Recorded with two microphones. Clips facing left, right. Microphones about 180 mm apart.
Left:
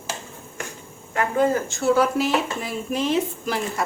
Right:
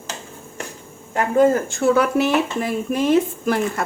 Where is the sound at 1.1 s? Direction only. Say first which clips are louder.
Right 5 dB; 45° right (ahead or behind).